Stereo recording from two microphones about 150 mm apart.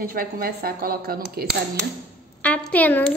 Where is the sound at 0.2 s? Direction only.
75° right (ahead or behind).